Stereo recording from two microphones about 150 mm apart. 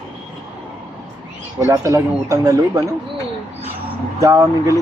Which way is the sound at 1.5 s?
20° right (ahead or behind).